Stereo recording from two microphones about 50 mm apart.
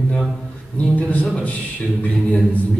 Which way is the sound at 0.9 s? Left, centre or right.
Left.